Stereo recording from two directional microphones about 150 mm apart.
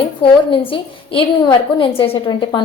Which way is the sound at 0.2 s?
35° left (ahead or behind).